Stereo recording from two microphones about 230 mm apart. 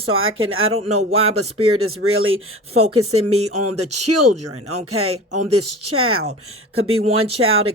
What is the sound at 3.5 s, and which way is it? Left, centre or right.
Speech, right.